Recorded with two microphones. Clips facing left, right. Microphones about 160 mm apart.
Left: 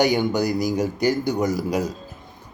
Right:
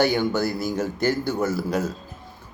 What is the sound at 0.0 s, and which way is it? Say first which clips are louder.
A man's voice: left 1 dB; 15° left (ahead or behind).